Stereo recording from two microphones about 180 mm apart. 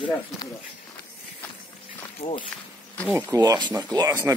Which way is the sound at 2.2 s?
35° left (ahead or behind).